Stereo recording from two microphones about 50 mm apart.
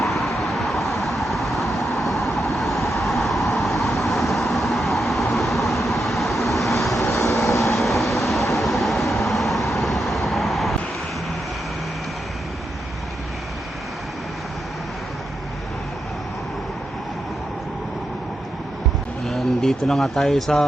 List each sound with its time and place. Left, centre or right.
0.0 s vehicle: centre
7.0 s vehicle: left
7.8 s vehicle: centre
19.2 s speech: centre